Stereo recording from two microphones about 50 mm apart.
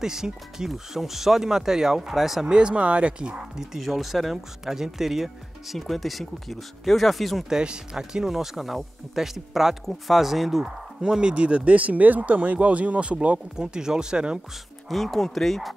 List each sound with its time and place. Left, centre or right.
0.0 s speech: centre
2.4 s speech: right
3.5 s speech: centre
7.4 s speech: centre
10.6 s speech: centre
13.6 s speech: centre
14.9 s speech: centre